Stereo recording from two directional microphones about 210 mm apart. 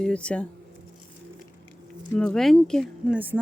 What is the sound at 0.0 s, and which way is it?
Speech, 5° left (ahead or behind).